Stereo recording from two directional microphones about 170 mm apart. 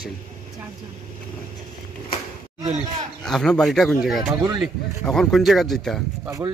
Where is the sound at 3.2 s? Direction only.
5° left (ahead or behind).